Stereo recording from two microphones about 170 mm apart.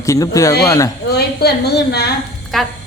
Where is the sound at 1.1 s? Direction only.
70° left (ahead or behind).